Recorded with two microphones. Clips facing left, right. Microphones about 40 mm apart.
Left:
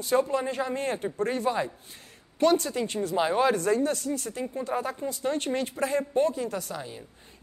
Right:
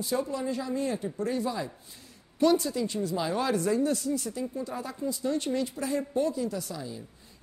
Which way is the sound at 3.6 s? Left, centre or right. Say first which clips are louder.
Left 1 dB; left.